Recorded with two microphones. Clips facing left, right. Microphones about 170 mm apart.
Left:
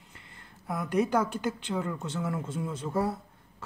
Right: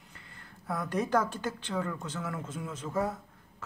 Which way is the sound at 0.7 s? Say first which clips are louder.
Left 3 dB; 10° left (ahead or behind).